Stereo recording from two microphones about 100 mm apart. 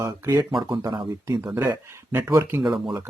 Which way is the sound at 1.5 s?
20° right (ahead or behind).